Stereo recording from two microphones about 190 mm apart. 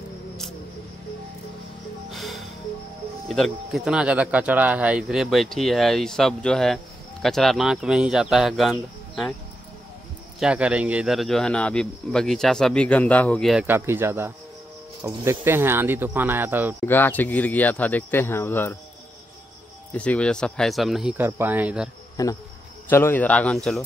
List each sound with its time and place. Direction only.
2.0 s music: centre (ahead or behind)
3.3 s speech: centre (ahead or behind)
10.4 s speech: 5° right (ahead or behind)
13.7 s speech: 10° right (ahead or behind)
16.8 s speech: 10° left (ahead or behind)
19.9 s speech: 5° left (ahead or behind)
22.1 s cricket: 20° left (ahead or behind)
22.8 s speech: 10° left (ahead or behind)